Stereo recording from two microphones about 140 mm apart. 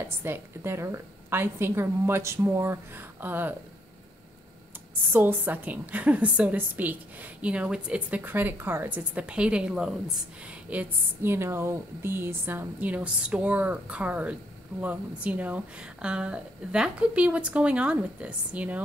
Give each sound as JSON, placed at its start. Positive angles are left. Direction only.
{"t": 0.2, "sound": "speech", "side_deg": -15}
{"t": 5.1, "sound": "speech", "side_deg": -15}